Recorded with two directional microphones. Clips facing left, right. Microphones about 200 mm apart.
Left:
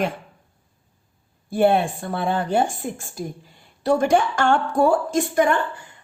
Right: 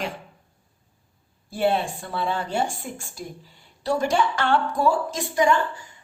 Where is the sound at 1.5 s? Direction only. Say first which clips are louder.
Left 5 dB; 55° left (ahead or behind).